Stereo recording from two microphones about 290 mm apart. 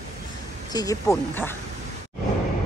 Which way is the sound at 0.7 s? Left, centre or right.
Centre.